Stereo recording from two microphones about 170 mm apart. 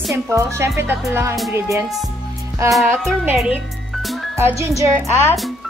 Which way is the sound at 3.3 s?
Centre (ahead or behind).